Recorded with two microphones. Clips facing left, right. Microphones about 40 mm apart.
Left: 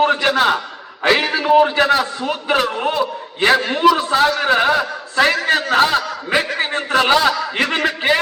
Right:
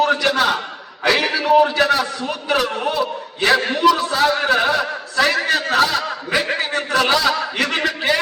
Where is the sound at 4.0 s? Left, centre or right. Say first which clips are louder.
Left 2 dB; left.